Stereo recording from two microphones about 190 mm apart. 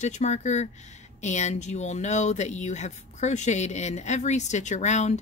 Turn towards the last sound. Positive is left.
turn(degrees=35)  # may be behind; listen again after turning